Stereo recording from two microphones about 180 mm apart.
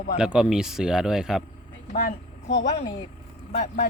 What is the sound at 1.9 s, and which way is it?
Speech, 50° left (ahead or behind).